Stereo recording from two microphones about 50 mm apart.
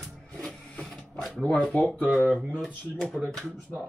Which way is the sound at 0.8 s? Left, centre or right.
Centre.